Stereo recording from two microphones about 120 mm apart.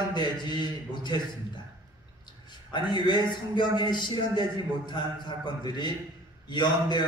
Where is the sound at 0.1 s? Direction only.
35° left (ahead or behind).